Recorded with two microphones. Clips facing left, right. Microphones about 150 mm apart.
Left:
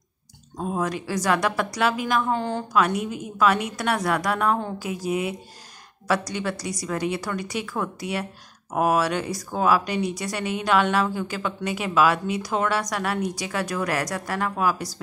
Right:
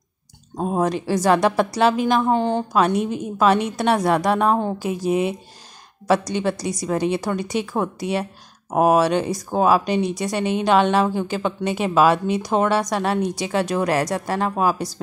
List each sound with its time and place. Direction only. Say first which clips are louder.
0.6 s a woman's voice: right 5 dB; 30° right (ahead or behind)